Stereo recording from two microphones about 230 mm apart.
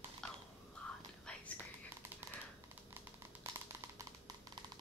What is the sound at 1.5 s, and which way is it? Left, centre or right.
Whispering, centre.